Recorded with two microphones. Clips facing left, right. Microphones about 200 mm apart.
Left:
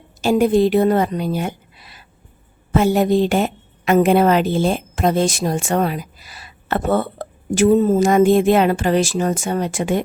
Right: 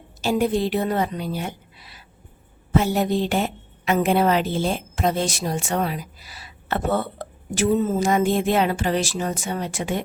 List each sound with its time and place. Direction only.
0.2 s a woman's voice: 50° left (ahead or behind)